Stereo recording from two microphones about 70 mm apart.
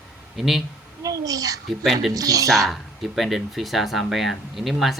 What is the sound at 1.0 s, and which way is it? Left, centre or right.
A child's voice, right.